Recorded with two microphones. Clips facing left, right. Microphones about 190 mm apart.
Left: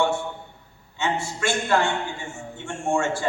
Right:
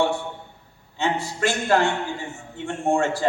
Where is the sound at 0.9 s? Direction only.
35° right (ahead or behind).